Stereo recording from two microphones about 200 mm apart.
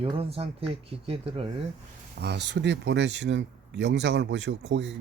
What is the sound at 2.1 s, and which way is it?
Speech, 55° right (ahead or behind).